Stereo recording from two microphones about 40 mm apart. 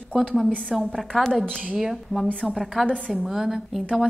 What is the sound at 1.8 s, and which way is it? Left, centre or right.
A woman's voice, centre.